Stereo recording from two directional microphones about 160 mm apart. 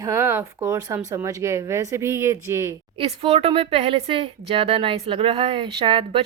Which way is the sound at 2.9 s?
35° right (ahead or behind).